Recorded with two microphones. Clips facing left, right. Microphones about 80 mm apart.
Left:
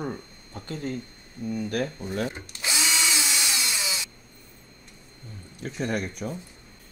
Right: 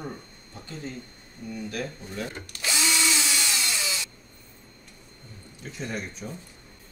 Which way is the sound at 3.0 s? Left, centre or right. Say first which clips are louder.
Right 1 dB; centre.